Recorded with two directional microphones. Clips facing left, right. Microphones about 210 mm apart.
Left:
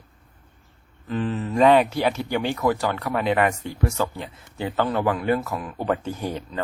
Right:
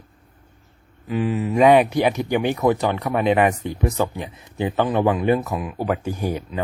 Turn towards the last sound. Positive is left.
turn(degrees=-10)  # may be behind; listen again after turning